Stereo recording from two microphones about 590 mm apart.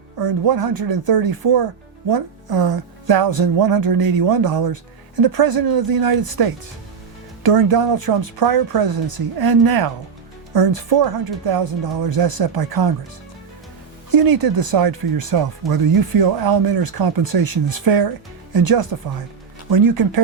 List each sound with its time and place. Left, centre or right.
0.2 s speech: right
14.1 s speech: right